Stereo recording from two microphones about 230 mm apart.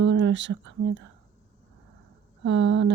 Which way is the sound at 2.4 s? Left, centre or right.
Right.